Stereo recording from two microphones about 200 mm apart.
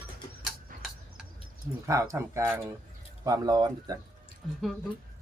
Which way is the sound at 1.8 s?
15° right (ahead or behind).